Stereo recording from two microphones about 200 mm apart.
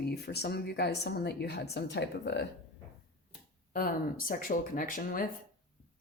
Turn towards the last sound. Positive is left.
turn(degrees=45)  # may be behind; listen again after turning